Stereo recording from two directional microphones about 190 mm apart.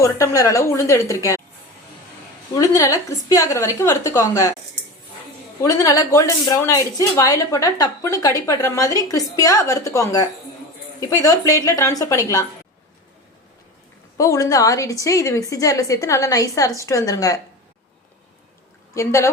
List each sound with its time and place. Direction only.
0.0 s speech: 15° left (ahead or behind)
2.6 s speech: 15° left (ahead or behind)
5.6 s speech: 20° left (ahead or behind)
14.2 s speech: 20° left (ahead or behind)
18.9 s speech: 15° left (ahead or behind)